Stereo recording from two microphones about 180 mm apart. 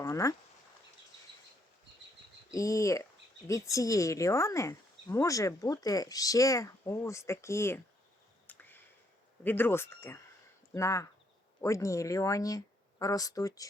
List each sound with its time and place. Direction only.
0.0 s speech: 15° left (ahead or behind)
2.5 s speech: 20° left (ahead or behind)
8.4 s a sound: 10° left (ahead or behind)
9.4 s speech: 10° left (ahead or behind)